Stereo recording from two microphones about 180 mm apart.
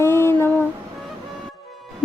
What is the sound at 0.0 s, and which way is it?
Music, 15° left (ahead or behind).